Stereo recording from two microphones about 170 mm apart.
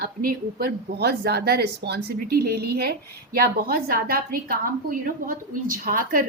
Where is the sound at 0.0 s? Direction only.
60° right (ahead or behind).